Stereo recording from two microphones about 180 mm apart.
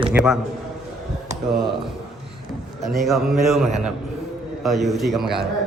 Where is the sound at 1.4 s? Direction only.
Centre (ahead or behind).